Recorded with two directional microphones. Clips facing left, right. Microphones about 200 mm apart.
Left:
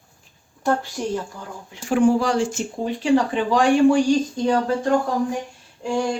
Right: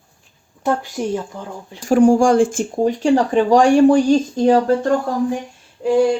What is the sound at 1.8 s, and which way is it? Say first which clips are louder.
Speech: right 6 dB; 40° right (ahead or behind).